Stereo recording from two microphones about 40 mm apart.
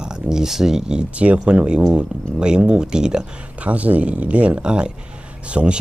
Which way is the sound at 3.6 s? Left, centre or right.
Right.